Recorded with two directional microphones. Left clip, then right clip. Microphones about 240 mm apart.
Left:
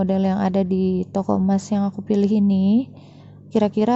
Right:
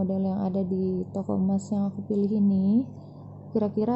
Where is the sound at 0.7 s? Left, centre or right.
Left.